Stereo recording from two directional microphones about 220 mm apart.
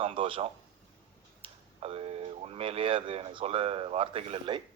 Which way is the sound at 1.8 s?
25° right (ahead or behind).